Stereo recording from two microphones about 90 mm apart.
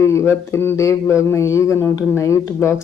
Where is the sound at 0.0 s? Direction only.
30° left (ahead or behind).